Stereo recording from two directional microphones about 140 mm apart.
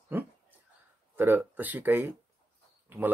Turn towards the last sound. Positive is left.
turn(degrees=-15)  # may be behind; listen again after turning